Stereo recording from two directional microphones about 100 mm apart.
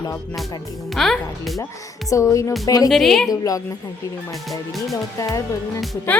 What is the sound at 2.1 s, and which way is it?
Speech, 30° left (ahead or behind).